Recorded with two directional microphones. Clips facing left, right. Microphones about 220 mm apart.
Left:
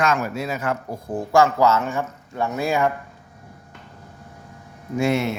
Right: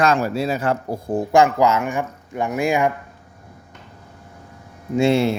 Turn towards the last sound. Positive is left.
turn(degrees=-30)  # may be behind; listen again after turning